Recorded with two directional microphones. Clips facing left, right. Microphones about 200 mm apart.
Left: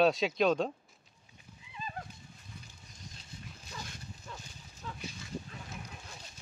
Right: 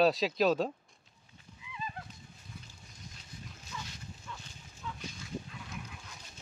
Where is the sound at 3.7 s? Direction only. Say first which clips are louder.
Right 1 dB; 40° left (ahead or behind).